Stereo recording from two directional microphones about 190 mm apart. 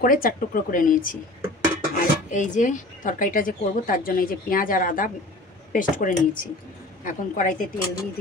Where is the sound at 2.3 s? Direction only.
40° left (ahead or behind).